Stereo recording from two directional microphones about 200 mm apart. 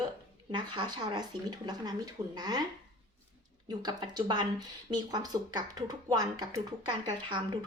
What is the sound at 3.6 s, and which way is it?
Speech, 20° right (ahead or behind).